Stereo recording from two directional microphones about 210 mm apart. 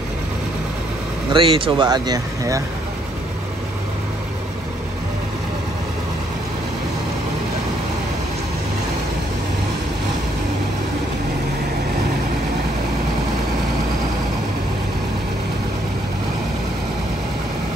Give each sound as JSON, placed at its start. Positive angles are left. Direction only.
{"t": 1.3, "sound": "speech", "side_deg": -25}